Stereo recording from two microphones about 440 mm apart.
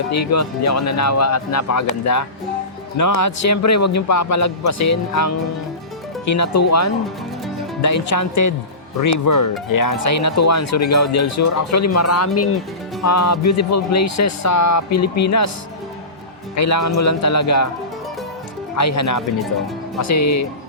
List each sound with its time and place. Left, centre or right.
0.1 s speech: left
16.6 s speech: left
18.8 s speech: left